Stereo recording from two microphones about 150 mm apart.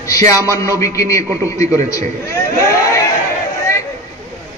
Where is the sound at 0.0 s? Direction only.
20° left (ahead or behind).